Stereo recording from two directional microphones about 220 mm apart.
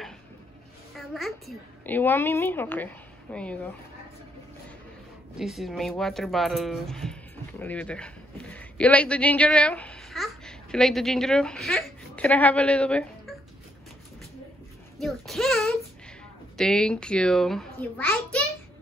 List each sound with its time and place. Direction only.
0.9 s a child's voice: centre (ahead or behind)
5.4 s speech: centre (ahead or behind)
15.0 s a child's voice: centre (ahead or behind)